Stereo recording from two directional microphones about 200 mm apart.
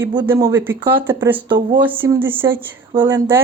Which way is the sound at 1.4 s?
20° right (ahead or behind).